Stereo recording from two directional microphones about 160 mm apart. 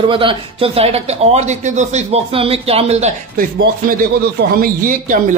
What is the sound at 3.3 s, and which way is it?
Speech, 60° right (ahead or behind).